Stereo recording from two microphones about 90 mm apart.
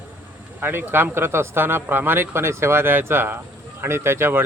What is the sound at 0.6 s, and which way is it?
Speech, 25° right (ahead or behind).